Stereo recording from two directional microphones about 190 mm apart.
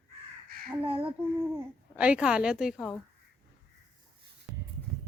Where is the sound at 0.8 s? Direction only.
30° right (ahead or behind).